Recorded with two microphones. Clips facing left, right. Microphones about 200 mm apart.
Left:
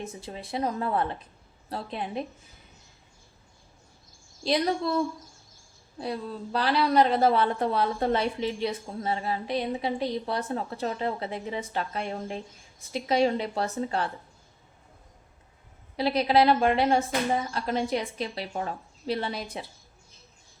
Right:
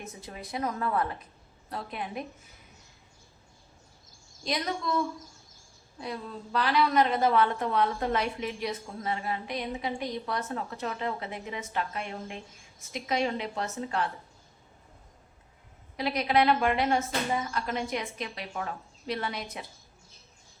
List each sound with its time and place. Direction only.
0.0 s a woman's voice: 30° left (ahead or behind)
4.4 s a woman's voice: 30° left (ahead or behind)
16.0 s a woman's voice: 30° left (ahead or behind)